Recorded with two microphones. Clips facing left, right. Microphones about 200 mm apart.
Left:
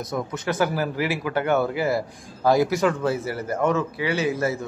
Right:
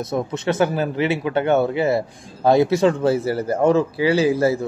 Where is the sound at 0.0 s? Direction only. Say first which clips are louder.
Right 5 dB; 25° right (ahead or behind).